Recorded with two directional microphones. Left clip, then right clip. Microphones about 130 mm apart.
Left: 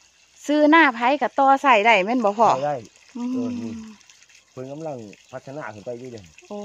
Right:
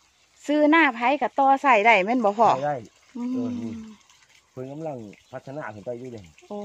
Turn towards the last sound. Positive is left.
turn(degrees=25)  # may be behind; listen again after turning